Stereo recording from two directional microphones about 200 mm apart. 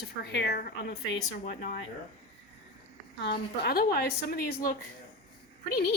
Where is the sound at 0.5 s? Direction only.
45° left (ahead or behind).